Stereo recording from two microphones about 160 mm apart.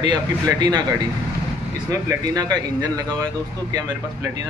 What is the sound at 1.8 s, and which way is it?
Speech, 25° right (ahead or behind).